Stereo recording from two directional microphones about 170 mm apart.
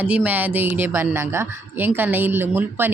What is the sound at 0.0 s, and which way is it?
A woman's voice, 10° right (ahead or behind).